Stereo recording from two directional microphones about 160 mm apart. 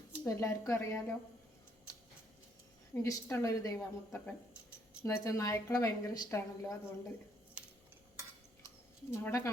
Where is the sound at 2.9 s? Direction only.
15° left (ahead or behind).